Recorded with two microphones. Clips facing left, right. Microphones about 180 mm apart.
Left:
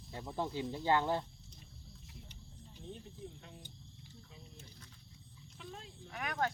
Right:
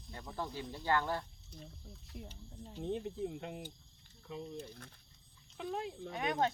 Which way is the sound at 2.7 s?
80° right.